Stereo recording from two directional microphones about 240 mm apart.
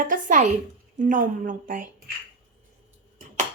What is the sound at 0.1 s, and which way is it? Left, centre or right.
Speech, right.